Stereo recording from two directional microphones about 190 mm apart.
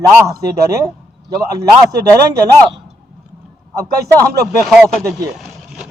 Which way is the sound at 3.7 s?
15° right (ahead or behind).